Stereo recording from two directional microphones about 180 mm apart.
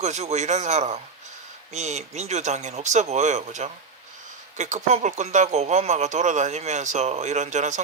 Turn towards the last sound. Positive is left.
turn(degrees=-40)  # may be behind; listen again after turning